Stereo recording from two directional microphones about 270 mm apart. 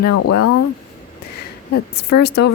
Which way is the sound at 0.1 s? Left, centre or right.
Left.